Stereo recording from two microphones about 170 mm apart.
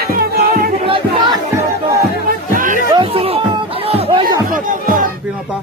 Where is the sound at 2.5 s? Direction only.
50° right (ahead or behind).